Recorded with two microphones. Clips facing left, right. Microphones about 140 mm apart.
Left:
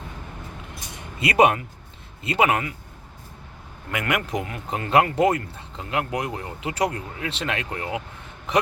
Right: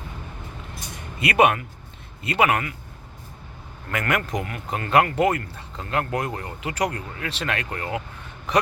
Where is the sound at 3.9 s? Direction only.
15° left (ahead or behind).